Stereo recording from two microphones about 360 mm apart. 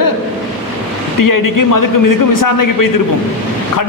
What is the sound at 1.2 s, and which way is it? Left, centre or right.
A man's voice, left.